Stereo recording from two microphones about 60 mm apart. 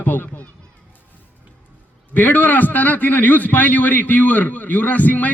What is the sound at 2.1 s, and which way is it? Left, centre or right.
A man's voice, left.